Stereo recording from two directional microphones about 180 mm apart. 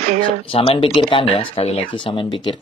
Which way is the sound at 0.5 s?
30° left (ahead or behind).